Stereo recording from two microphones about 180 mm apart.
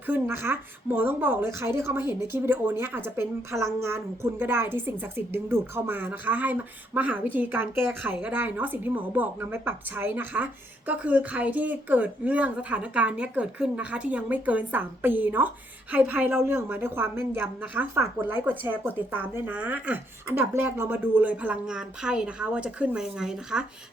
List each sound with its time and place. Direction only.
0.0 s a woman's voice: 10° right (ahead or behind)